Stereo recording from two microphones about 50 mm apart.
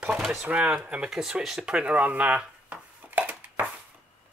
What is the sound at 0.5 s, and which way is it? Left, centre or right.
Speech, right.